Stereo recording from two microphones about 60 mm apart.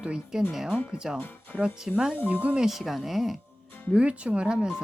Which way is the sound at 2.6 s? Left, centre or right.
Centre.